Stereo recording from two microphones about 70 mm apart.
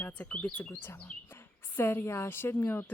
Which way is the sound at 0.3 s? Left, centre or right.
Centre.